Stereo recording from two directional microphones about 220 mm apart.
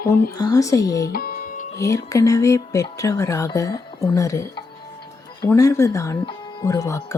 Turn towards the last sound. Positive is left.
turn(degrees=15)  # may be behind; listen again after turning